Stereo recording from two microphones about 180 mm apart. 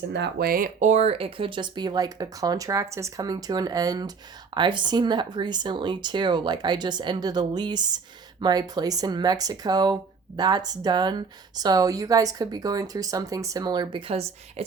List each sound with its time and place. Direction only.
0.1 s speech: 65° right (ahead or behind); by 14.6 s 35° right (ahead or behind)